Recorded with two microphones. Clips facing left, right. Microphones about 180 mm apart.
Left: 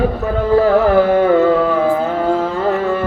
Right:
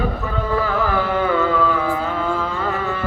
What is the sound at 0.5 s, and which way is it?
Music, 45° left (ahead or behind).